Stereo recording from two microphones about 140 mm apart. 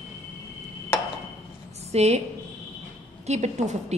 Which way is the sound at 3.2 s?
55° right (ahead or behind).